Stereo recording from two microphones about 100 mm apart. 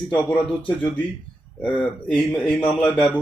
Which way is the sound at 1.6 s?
15° left (ahead or behind).